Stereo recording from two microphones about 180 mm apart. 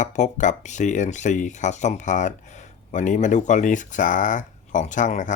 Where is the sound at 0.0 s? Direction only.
45° left (ahead or behind).